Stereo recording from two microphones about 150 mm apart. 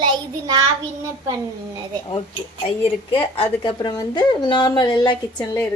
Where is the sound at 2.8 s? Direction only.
35° left (ahead or behind).